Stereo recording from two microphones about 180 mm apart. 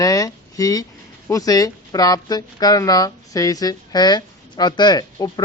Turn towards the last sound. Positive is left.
turn(degrees=20)  # may be behind; listen again after turning